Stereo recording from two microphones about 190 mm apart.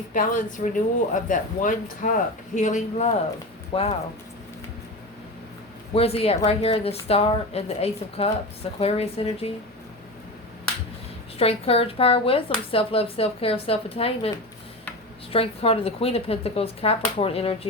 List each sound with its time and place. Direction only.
0.1 s speech: 45° left (ahead or behind)
5.9 s speech: 30° left (ahead or behind)
11.3 s speech: 30° left (ahead or behind)
15.3 s speech: 30° left (ahead or behind)